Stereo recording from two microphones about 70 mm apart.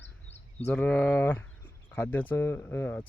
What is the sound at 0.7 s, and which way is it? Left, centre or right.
Speech, centre.